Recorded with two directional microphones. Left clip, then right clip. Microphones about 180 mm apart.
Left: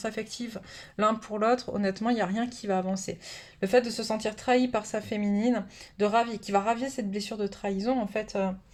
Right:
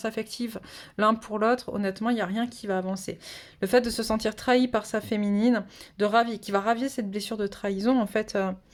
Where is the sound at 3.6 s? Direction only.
45° right (ahead or behind).